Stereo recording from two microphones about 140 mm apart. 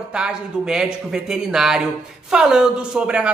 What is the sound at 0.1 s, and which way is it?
A man's voice, 5° right (ahead or behind).